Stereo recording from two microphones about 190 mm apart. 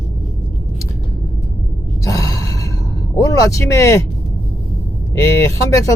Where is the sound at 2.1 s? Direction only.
15° left (ahead or behind).